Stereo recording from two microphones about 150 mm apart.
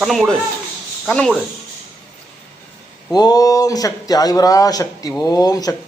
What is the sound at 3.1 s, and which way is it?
Speech, 25° left (ahead or behind).